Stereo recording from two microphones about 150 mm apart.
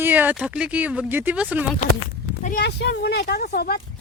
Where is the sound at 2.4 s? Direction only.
80° left.